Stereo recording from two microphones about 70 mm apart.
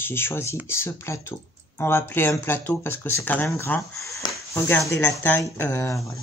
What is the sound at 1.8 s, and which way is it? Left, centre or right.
Speech, left.